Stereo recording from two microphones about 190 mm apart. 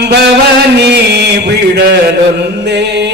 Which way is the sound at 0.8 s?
60° right (ahead or behind).